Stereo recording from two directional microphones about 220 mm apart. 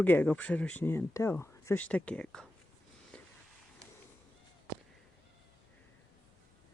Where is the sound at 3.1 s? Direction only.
5° left (ahead or behind).